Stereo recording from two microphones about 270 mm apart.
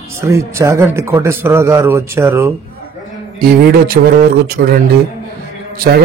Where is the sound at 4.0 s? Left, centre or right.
Right.